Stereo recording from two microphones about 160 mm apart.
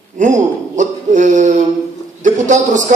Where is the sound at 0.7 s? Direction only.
50° right (ahead or behind).